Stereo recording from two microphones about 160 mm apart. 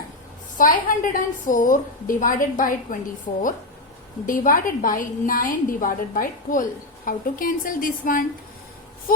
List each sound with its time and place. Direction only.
0.5 s a woman's voice: 55° left (ahead or behind)
4.3 s a woman's voice: 60° left (ahead or behind)